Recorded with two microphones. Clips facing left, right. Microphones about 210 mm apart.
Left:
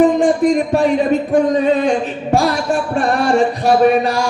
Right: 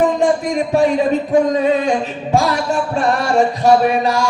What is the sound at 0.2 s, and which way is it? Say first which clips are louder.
Speech: left 3 dB; 55° left (ahead or behind).